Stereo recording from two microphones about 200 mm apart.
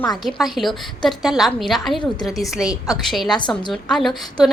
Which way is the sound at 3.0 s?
Centre (ahead or behind).